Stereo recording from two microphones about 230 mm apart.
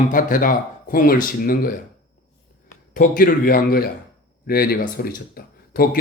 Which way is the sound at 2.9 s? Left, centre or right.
Left.